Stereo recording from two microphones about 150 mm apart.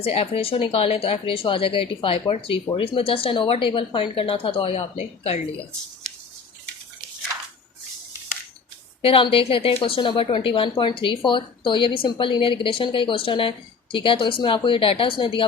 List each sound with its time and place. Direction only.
0.0 s speech: 40° left (ahead or behind)
9.0 s speech: 35° left (ahead or behind)